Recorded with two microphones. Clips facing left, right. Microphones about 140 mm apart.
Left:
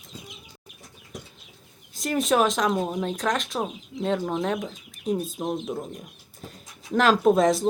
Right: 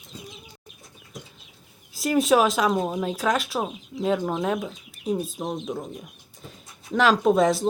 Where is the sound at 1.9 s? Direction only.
5° right (ahead or behind).